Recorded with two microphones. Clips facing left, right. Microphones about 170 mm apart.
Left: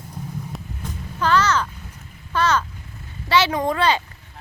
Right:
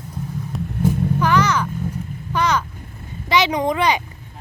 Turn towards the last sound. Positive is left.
turn(degrees=-15)  # may be behind; listen again after turning